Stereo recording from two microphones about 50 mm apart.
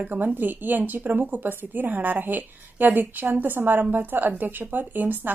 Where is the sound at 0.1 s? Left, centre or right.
Right.